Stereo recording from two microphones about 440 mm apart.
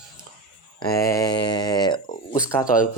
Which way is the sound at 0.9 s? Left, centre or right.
Centre.